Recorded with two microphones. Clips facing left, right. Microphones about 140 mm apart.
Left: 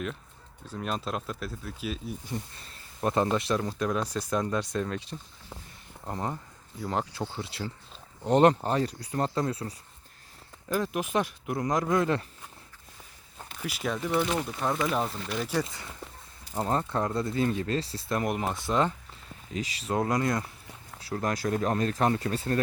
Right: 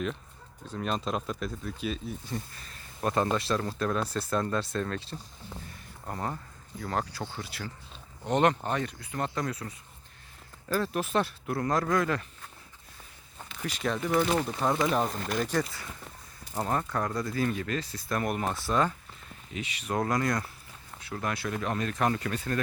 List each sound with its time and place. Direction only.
0.7 s speech: 5° left (ahead or behind)
2.6 s a sound: 20° left (ahead or behind)
3.3 s speech: 20° left (ahead or behind)
8.2 s speech: 35° left (ahead or behind)
10.7 s speech: 15° left (ahead or behind)
13.6 s speech: 5° left (ahead or behind)
15.0 s speech: 45° right (ahead or behind)
15.4 s speech: 10° left (ahead or behind)
15.6 s speech: 20° left (ahead or behind)
19.5 s speech: 35° left (ahead or behind)
21.0 s speech: 35° left (ahead or behind)